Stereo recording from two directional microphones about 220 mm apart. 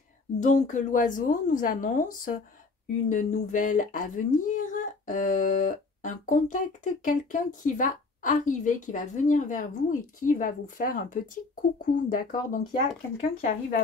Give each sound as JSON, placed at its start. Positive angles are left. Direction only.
{"t": 0.4, "sound": "speech", "side_deg": 35}